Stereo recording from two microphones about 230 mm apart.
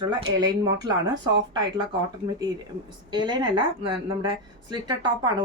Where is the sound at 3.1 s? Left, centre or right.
Centre.